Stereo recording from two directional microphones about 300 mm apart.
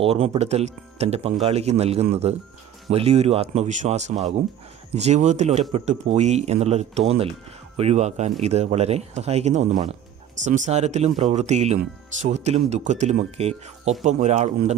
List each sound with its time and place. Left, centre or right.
0.0 s speech: centre